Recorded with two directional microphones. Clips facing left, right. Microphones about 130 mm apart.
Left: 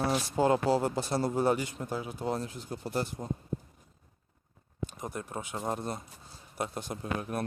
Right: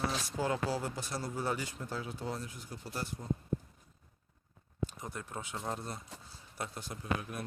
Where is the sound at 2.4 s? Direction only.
25° left (ahead or behind).